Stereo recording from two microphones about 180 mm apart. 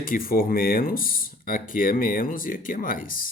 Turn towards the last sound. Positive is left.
turn(degrees=50)  # may be behind; listen again after turning